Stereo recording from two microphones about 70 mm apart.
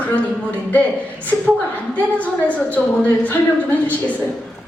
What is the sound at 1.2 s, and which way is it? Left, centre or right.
A woman's voice, left.